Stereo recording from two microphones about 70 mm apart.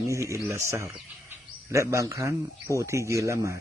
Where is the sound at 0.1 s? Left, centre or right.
Right.